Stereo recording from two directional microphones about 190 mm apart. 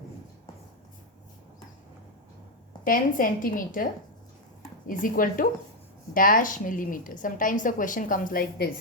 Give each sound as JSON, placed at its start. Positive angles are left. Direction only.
{"t": 2.8, "sound": "a woman's voice", "side_deg": 45}
{"t": 4.9, "sound": "a woman's voice", "side_deg": 45}